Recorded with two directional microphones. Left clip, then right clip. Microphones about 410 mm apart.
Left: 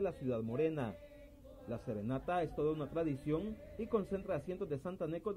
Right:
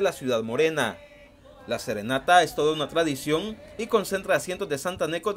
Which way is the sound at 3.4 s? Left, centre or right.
Centre.